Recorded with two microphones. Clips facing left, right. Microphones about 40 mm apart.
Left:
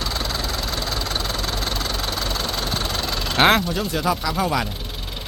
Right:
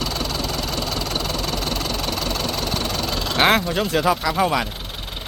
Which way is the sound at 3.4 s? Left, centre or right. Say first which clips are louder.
Left 1 dB; centre.